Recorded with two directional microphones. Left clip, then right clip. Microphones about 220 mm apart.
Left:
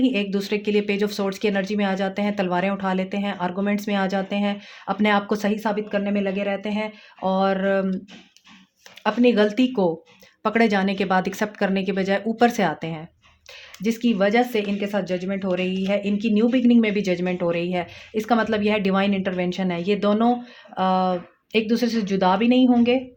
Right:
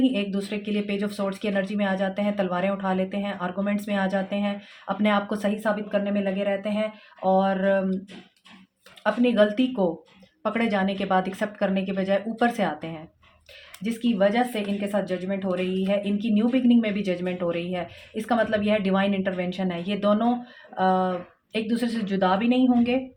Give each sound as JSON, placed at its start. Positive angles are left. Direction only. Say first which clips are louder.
{"t": 0.0, "sound": "speech", "louder": "left 3 dB", "side_deg": 50}
{"t": 9.0, "sound": "speech", "louder": "left 2 dB", "side_deg": 50}